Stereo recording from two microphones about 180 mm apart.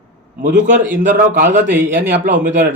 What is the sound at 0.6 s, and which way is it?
A man's voice, 45° right (ahead or behind).